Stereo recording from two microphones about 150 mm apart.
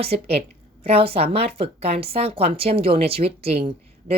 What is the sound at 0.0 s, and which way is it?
A woman's voice, 40° right (ahead or behind).